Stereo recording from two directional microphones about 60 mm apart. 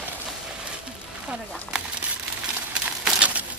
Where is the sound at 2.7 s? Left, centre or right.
Centre.